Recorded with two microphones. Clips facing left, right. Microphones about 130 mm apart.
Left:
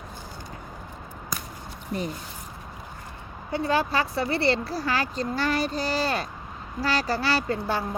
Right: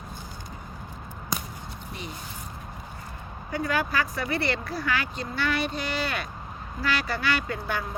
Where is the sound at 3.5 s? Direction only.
30° left (ahead or behind).